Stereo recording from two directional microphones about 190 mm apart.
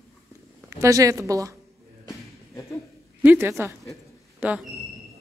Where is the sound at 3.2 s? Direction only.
10° right (ahead or behind).